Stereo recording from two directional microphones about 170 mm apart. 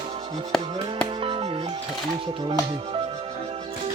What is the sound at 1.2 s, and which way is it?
Music, 30° right (ahead or behind).